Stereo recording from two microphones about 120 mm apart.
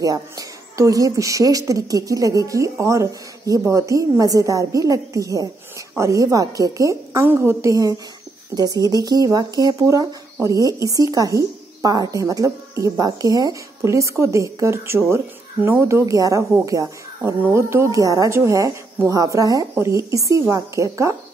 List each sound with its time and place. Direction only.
0.0 s a woman's voice: 30° right (ahead or behind)